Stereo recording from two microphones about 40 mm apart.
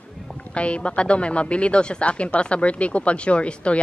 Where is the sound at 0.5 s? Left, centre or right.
Left.